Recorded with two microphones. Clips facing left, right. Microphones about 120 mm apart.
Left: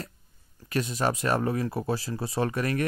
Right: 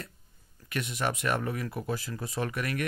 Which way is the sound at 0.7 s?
35° left (ahead or behind).